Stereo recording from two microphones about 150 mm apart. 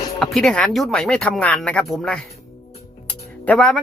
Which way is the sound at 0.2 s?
Centre (ahead or behind).